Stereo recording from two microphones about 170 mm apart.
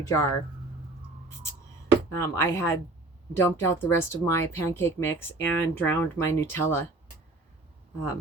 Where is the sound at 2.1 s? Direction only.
15° left (ahead or behind).